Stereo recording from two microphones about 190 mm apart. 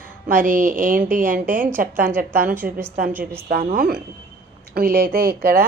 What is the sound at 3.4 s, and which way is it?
A woman's voice, 45° right (ahead or behind).